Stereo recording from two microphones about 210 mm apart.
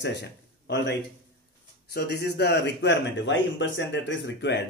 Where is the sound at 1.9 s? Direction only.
50° left (ahead or behind).